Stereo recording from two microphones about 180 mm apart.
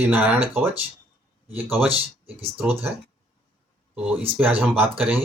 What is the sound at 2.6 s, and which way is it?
Speech, 10° right (ahead or behind).